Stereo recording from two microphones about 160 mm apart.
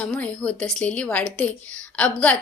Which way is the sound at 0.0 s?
5° left (ahead or behind).